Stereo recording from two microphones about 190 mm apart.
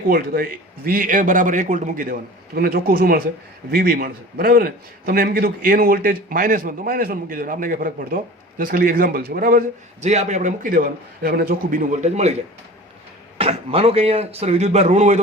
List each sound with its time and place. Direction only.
0.1 s a man's voice: 50° right (ahead or behind); by 12.4 s 35° right (ahead or behind)
13.4 s speech: 30° right (ahead or behind)